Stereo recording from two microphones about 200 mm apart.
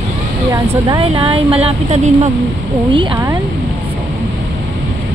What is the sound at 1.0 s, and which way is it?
Speech, 30° right (ahead or behind).